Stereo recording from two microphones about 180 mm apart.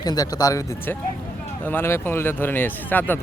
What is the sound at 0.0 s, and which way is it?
A man's voice, 20° left (ahead or behind).